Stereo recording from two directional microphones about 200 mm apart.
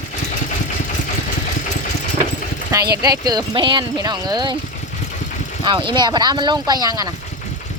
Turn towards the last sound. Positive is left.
turn(degrees=-20)  # may be behind; listen again after turning